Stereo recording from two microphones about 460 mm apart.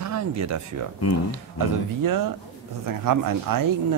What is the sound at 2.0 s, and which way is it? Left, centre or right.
A man's voice, right.